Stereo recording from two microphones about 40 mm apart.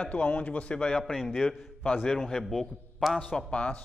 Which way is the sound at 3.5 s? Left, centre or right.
Left.